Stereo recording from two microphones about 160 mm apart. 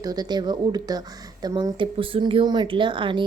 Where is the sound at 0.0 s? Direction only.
25° right (ahead or behind).